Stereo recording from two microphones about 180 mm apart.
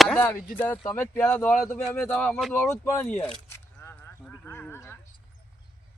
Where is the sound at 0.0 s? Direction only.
5° left (ahead or behind).